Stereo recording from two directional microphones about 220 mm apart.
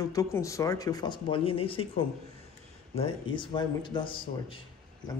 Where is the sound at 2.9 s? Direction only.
25° left (ahead or behind).